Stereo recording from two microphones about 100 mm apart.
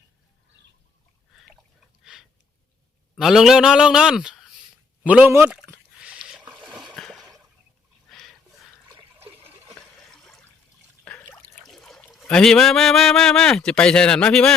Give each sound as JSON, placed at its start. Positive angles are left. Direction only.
{"t": 3.2, "sound": "a man's voice", "side_deg": -5}
{"t": 5.0, "sound": "speech", "side_deg": -15}
{"t": 6.0, "sound": "a sound", "side_deg": -10}
{"t": 6.9, "sound": "a sound", "side_deg": 5}
{"t": 10.1, "sound": "water", "side_deg": 5}
{"t": 11.0, "sound": "trickle", "side_deg": 10}
{"t": 11.7, "sound": "speech", "side_deg": 5}